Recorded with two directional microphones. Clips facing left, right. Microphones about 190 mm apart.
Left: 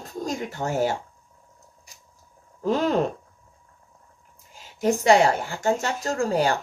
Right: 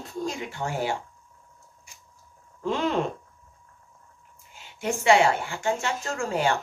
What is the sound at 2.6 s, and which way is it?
Speech, 40° left (ahead or behind).